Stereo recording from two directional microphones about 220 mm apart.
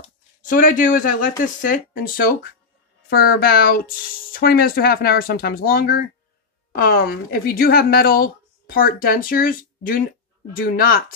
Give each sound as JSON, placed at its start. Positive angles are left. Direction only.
{"t": 0.4, "sound": "speech", "side_deg": 35}